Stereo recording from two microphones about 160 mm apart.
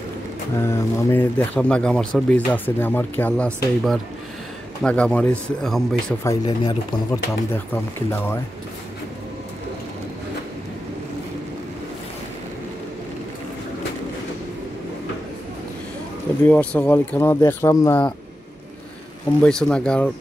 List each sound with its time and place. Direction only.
0.6 s speech: 15° left (ahead or behind)
6.2 s speech: 25° left (ahead or behind)
7.1 s speech: 15° left (ahead or behind)
16.4 s speech: 10° left (ahead or behind)
19.4 s speech: 5° left (ahead or behind)